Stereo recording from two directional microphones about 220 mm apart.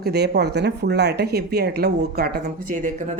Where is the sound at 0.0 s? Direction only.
45° right (ahead or behind).